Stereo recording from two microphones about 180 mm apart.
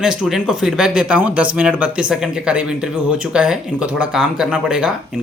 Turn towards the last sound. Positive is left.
turn(degrees=-5)  # may be behind; listen again after turning